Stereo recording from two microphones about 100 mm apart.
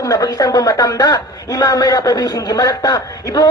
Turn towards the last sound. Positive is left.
turn(degrees=40)  # may be behind; listen again after turning